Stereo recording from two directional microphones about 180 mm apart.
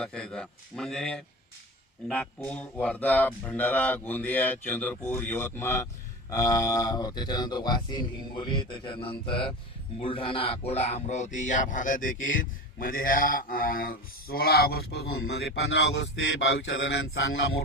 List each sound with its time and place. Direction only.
0.0 s speech: 5° left (ahead or behind); by 17.6 s 75° left (ahead or behind)